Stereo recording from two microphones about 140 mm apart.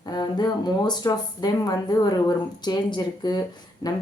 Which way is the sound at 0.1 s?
30° left (ahead or behind).